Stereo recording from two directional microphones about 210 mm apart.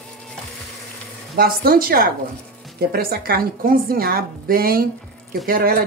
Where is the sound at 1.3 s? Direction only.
45° right (ahead or behind).